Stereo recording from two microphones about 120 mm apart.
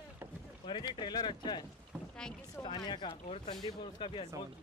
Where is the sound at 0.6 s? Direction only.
40° left (ahead or behind).